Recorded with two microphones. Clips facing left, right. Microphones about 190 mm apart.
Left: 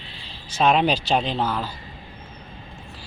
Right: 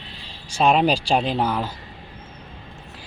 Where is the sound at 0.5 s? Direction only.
5° right (ahead or behind).